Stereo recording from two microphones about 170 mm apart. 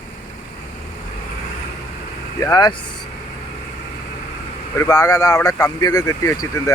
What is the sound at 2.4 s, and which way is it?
Speech, 20° left (ahead or behind).